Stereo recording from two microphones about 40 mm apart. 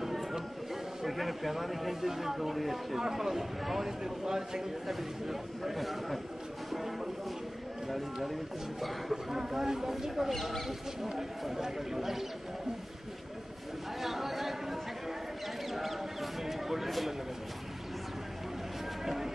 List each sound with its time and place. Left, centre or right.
0.0 s music: centre
1.0 s speech: centre
9.1 s speech: centre
14.0 s chatter: centre
15.7 s a sound: centre